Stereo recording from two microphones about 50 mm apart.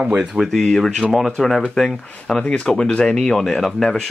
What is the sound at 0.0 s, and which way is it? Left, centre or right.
Speech, centre.